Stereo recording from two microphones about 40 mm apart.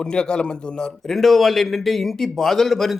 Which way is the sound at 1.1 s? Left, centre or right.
Centre.